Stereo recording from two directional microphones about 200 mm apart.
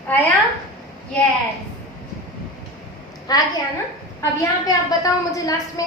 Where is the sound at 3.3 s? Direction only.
20° left (ahead or behind).